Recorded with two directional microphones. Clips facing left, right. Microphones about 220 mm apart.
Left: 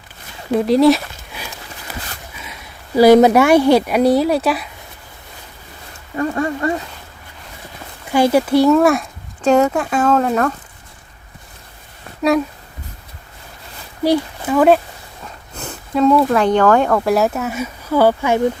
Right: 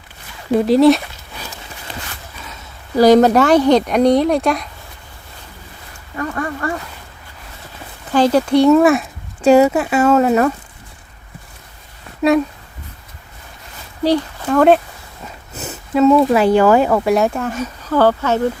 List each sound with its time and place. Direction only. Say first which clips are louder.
0.5 s a sound: right 1 dB; centre (ahead or behind)
2.4 s speech: even; 10° left (ahead or behind)
6.1 s speech: left 4 dB; 25° left (ahead or behind)
8.1 s speech: even; 10° left (ahead or behind); by 10.5 s 10° right (ahead or behind)
14.0 s speech: even; 10° left (ahead or behind)
15.5 s sniff: right 2 dB; 5° right (ahead or behind)
16.3 s speech: right 2 dB; 10° right (ahead or behind); by 18.3 s 10° left (ahead or behind)